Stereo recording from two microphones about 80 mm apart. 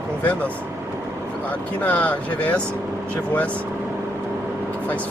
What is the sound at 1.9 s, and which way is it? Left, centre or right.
Speech, centre.